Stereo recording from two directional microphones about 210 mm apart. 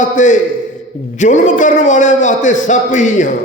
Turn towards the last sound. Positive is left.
turn(degrees=35)  # may be behind; listen again after turning